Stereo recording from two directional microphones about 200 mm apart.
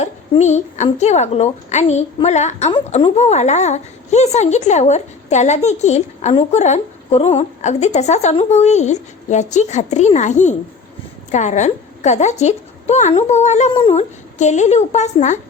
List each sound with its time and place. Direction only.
0.0 s a woman's voice: 35° left (ahead or behind)